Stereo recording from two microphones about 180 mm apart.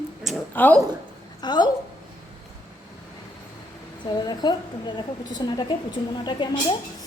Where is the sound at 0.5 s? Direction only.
10° left (ahead or behind).